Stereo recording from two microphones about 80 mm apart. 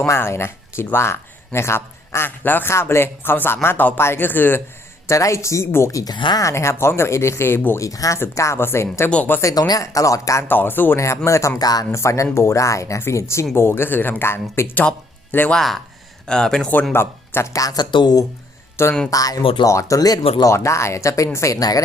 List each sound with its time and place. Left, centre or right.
0.1 s speech: left
5.0 s speech: left
7.8 s speech: left
8.2 s speech: left
9.0 s speech: centre
9.4 s speech: left
10.5 s speech: left
10.9 s speech: left
11.9 s speech: left; by 15.5 s centre
15.5 s speech: centre
16.9 s speech: left
18.8 s speech: left
19.1 s speech: left
20.5 s speech: left